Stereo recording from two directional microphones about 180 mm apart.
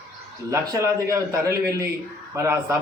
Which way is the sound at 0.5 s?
15° right (ahead or behind).